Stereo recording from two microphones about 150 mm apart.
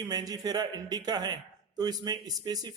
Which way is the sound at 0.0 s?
25° right (ahead or behind).